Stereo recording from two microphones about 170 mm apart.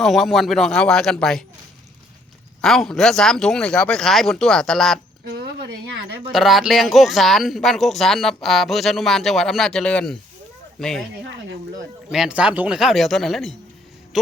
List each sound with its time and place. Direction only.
0.0 s speech: centre (ahead or behind)
2.6 s speech: centre (ahead or behind)
5.3 s speech: 70° right (ahead or behind)
6.3 s speech: centre (ahead or behind)
11.2 s speech: 90° right
12.1 s speech: 5° right (ahead or behind)